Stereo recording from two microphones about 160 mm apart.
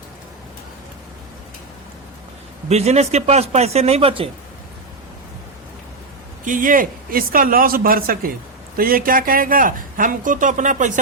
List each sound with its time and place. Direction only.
2.6 s speech: 45° right (ahead or behind)
6.4 s speech: 55° right (ahead or behind)